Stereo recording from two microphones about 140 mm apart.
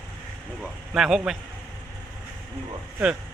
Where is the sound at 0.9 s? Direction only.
5° right (ahead or behind).